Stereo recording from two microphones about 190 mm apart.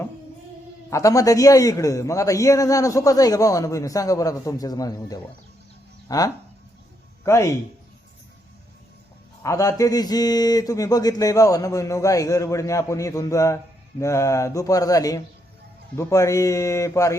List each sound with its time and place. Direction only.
0.9 s a man's voice: 15° left (ahead or behind)
9.4 s a man's voice: 15° left (ahead or behind)